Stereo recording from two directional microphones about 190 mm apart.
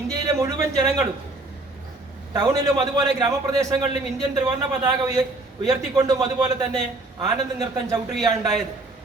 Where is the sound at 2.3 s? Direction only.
15° right (ahead or behind).